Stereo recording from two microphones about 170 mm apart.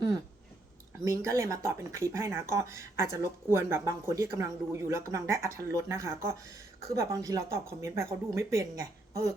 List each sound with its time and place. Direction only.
1.0 s speech: 15° right (ahead or behind)